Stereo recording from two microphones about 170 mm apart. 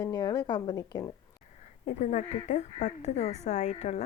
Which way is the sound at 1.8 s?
45° left (ahead or behind).